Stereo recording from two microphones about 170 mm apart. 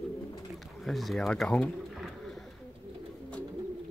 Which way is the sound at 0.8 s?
Centre (ahead or behind).